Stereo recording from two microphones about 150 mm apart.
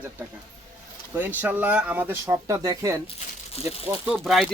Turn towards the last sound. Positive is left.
turn(degrees=0)  # may be behind; listen again after turning